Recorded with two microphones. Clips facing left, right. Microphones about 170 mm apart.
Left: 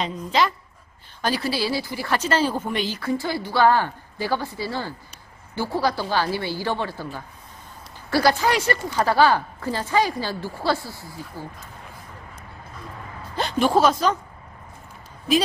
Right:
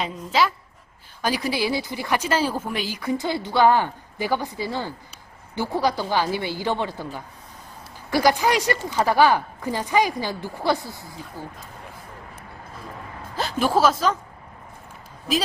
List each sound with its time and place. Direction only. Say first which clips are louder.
0.0 s speech: even; 5° right (ahead or behind)
13.4 s speech: left 1 dB; 5° right (ahead or behind)